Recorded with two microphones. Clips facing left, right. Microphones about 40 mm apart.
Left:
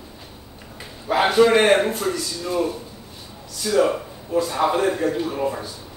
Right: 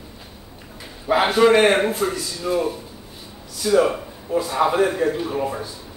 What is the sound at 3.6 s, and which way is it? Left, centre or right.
A man's voice, centre.